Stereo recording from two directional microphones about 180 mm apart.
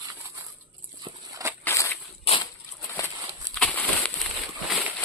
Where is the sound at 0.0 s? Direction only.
20° right (ahead or behind).